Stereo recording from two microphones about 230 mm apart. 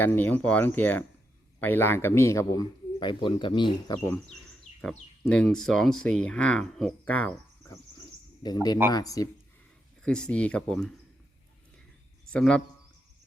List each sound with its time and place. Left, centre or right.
0.0 s a man's voice: centre
4.8 s speech: centre
8.4 s a man's voice: centre
10.0 s speech: centre
12.3 s speech: centre